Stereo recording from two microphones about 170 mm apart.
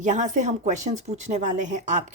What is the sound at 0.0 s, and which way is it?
Speech, 45° right (ahead or behind).